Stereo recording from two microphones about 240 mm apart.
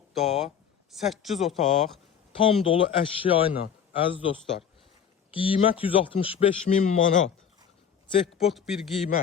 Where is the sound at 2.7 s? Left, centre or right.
Left.